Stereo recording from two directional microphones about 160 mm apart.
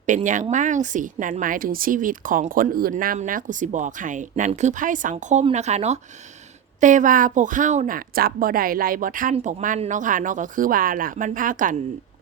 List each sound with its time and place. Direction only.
0.0 s a woman's voice: 50° right (ahead or behind)
5.1 s a woman's voice: 40° right (ahead or behind); by 9.3 s 60° right (ahead or behind)
9.3 s a woman's voice: 50° right (ahead or behind)